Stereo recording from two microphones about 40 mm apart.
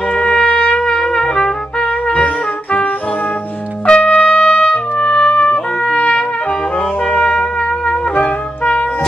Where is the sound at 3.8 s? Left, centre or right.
Left.